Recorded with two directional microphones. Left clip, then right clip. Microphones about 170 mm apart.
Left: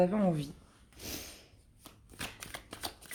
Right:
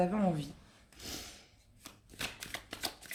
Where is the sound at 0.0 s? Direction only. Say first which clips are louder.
Left 3 dB; 40° left (ahead or behind).